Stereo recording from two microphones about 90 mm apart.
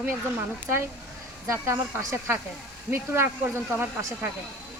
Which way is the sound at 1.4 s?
35° right (ahead or behind).